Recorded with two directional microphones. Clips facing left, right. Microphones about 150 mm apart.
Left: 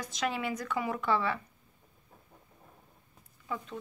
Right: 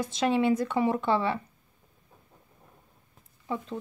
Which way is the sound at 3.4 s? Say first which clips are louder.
Right 5 dB; 30° right (ahead or behind).